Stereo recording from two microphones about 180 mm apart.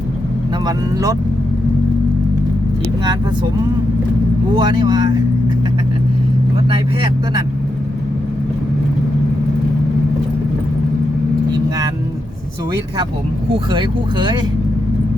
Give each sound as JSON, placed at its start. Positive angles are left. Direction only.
{"t": 4.5, "sound": "speech", "side_deg": -25}
{"t": 6.7, "sound": "speech", "side_deg": -30}
{"t": 13.7, "sound": "speech", "side_deg": -25}